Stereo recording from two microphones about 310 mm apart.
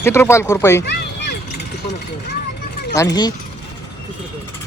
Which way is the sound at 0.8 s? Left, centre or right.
Left.